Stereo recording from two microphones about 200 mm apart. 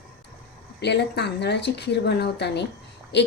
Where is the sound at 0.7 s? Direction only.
55° left (ahead or behind).